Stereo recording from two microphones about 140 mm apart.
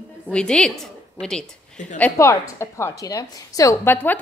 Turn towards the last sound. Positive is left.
turn(degrees=20)  # may be behind; listen again after turning